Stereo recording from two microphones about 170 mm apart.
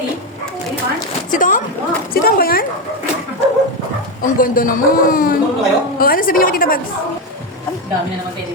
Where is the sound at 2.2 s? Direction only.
60° left (ahead or behind).